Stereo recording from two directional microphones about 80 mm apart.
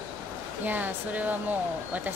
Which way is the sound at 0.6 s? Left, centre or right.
Right.